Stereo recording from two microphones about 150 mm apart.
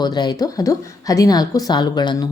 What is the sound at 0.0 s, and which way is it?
A woman's voice, 30° left (ahead or behind).